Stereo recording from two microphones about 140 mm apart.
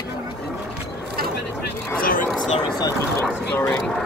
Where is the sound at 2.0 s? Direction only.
90° left.